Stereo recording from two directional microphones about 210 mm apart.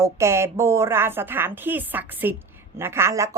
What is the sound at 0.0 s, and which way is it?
A woman's voice, 15° right (ahead or behind).